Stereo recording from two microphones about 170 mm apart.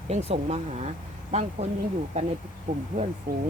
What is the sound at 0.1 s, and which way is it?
Speech, 40° right (ahead or behind).